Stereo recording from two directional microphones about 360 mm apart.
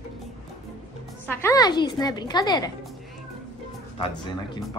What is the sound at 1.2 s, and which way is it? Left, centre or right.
A man's voice, centre.